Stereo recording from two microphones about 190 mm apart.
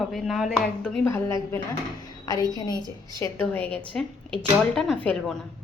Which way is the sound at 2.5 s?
20° left (ahead or behind).